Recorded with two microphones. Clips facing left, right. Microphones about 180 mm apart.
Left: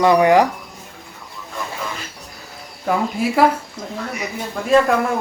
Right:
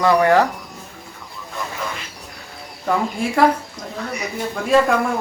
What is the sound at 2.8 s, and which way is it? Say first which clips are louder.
A man's voice: left 1 dB; 5° left (ahead or behind).